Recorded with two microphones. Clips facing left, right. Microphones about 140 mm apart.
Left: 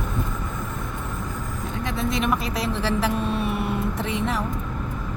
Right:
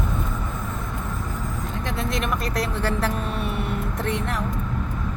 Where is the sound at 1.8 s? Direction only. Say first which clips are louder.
Left 2 dB; centre (ahead or behind).